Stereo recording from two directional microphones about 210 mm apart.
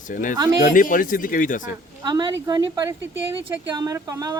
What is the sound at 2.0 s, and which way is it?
A woman's voice, 20° right (ahead or behind).